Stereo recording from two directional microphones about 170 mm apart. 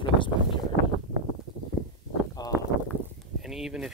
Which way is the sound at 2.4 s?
20° left (ahead or behind).